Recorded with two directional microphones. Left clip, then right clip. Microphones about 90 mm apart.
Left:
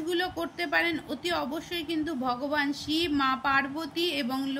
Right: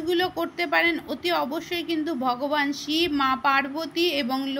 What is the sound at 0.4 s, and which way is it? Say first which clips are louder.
A woman's voice: right 5 dB; 30° right (ahead or behind).